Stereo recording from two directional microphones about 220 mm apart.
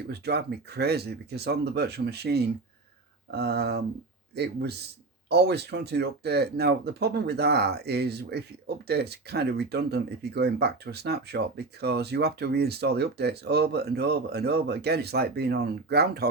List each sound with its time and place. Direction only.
0.1 s speech: 50° right (ahead or behind)